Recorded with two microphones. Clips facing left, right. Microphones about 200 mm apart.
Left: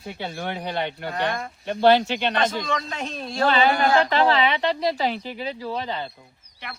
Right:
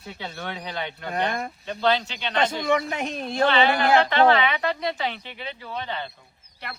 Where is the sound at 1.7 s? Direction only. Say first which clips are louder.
Left 7 dB; 60° left (ahead or behind).